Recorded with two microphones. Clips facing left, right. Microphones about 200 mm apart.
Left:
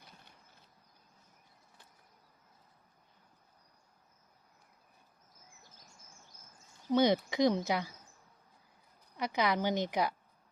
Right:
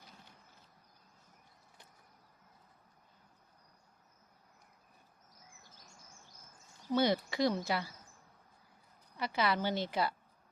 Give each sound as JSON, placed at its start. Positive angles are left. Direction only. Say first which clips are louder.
{"t": 6.9, "sound": "speech", "louder": "left 3 dB", "side_deg": 20}
{"t": 9.1, "sound": "speech", "louder": "left 2 dB", "side_deg": 15}